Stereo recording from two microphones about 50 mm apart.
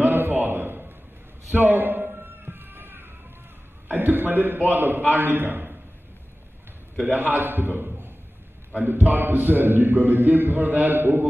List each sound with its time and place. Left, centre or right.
0.0 s a sound: right
3.9 s a man's voice: right
7.1 s a man's voice: right